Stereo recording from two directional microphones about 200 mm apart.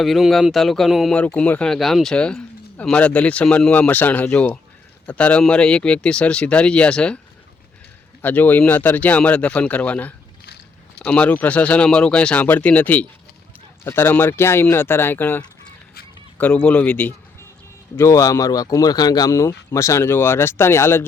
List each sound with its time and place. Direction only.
0.0 s speech: centre (ahead or behind)
8.2 s speech: 10° left (ahead or behind)
10.4 s walk: 55° left (ahead or behind)
11.0 s speech: 5° left (ahead or behind)